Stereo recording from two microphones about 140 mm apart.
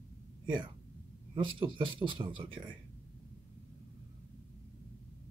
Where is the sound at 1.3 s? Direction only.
35° right (ahead or behind).